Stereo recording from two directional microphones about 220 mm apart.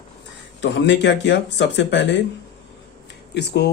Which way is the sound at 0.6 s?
55° left (ahead or behind).